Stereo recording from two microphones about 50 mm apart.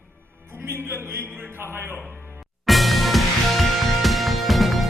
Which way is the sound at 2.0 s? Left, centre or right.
Right.